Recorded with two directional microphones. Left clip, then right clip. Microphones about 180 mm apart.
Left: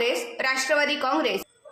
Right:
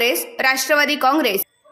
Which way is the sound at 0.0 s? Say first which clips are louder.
Right 7 dB; 40° right (ahead or behind).